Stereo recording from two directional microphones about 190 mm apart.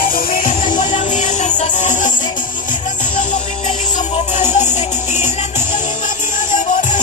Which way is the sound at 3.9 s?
40° left (ahead or behind).